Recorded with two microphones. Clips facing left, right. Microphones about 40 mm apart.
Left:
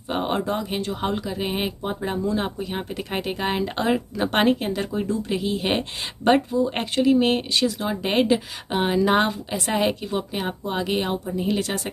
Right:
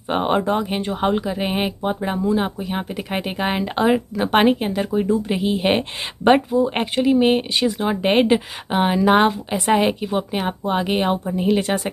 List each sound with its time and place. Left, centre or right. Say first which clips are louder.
0.1 s speech: right 5 dB; right
6.2 s speech: right 4 dB; centre
8.6 s speech: right 3 dB; centre
10.4 s speech: right 5 dB; right